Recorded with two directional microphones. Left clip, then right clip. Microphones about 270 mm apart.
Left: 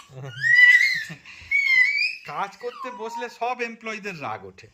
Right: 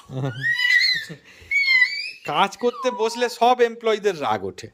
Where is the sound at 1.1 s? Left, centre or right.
Centre.